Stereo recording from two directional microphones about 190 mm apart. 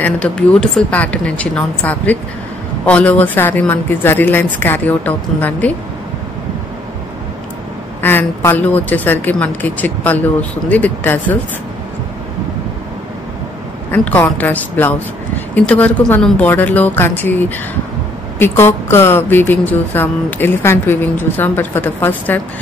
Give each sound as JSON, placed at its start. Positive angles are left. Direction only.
{"t": 0.0, "sound": "speech", "side_deg": 5}
{"t": 8.0, "sound": "speech", "side_deg": 10}
{"t": 13.9, "sound": "speech", "side_deg": 10}